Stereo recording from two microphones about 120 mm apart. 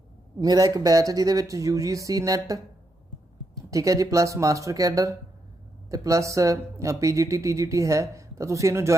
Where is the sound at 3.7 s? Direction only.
25° right (ahead or behind).